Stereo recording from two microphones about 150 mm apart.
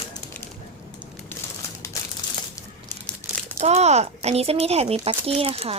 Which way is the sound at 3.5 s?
45° right (ahead or behind).